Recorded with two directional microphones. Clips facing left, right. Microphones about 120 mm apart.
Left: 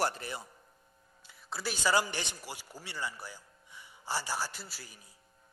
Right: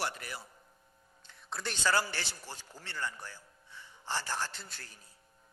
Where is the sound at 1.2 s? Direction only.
5° left (ahead or behind).